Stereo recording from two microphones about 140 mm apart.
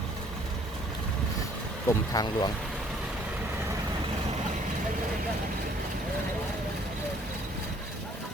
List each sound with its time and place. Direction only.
1.9 s speech: 25° left (ahead or behind)